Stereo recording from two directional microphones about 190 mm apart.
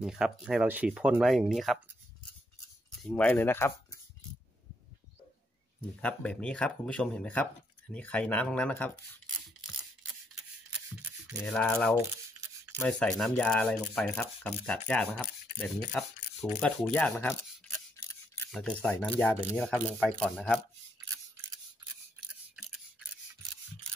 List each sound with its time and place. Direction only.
0.0 s speech: centre (ahead or behind)
3.0 s speech: 5° left (ahead or behind)
5.8 s speech: 5° left (ahead or behind)
11.0 s rub: 5° right (ahead or behind)
11.5 s speech: 5° left (ahead or behind)
18.0 s a sound: 15° left (ahead or behind)
18.5 s speech: 5° left (ahead or behind)
22.6 s scissors: centre (ahead or behind)